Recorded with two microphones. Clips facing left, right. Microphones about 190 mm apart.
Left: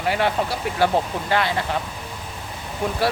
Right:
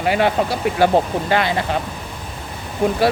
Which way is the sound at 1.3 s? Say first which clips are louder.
Even; 20° right (ahead or behind).